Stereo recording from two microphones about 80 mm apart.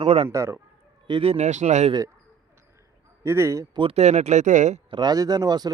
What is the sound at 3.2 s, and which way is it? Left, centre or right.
Speech, right.